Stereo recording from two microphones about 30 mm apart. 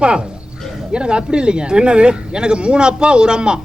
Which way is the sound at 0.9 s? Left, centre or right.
Right.